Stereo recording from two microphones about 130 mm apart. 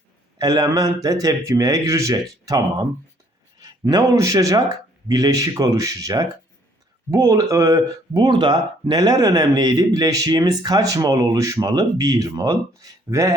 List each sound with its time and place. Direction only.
0.3 s speech: 30° right (ahead or behind)
3.6 s speech: 30° right (ahead or behind)